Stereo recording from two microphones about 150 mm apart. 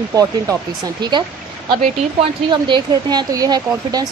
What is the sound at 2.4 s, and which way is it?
Speech, 30° right (ahead or behind).